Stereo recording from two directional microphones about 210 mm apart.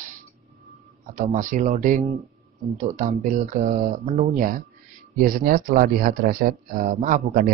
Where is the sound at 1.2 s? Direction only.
35° right (ahead or behind).